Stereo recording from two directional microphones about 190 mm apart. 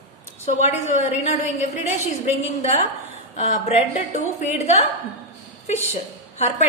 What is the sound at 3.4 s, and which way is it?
A woman's voice, 35° left (ahead or behind).